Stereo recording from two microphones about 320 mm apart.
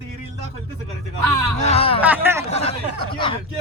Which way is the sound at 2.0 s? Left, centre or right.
Centre.